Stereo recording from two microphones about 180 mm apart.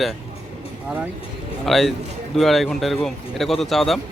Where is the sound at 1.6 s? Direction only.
Centre (ahead or behind).